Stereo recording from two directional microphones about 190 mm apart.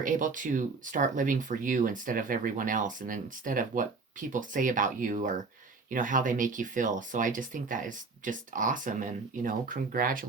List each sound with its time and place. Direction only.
0.0 s speech: 45° right (ahead or behind)